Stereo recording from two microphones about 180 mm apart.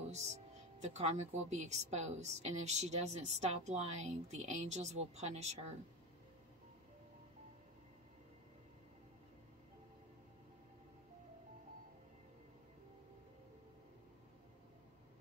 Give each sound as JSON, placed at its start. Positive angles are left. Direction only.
{"t": 0.1, "sound": "speech", "side_deg": -40}